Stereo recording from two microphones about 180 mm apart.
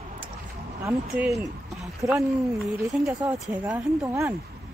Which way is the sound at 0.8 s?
15° right (ahead or behind).